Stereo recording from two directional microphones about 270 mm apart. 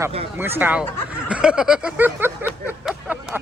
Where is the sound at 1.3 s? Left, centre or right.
Centre.